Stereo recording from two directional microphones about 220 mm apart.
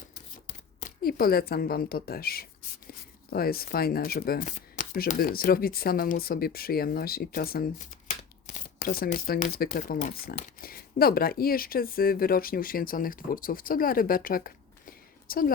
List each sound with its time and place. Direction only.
0.4 s speech: 40° left (ahead or behind)